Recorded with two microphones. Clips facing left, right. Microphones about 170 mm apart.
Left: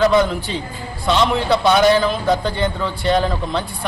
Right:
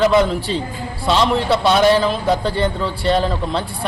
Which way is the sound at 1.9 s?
30° right (ahead or behind).